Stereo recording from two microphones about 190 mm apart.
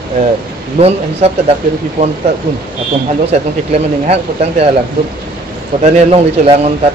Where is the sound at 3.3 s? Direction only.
35° right (ahead or behind).